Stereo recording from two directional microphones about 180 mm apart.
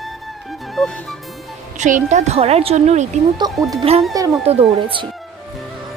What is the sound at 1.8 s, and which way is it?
A woman's voice, 40° right (ahead or behind).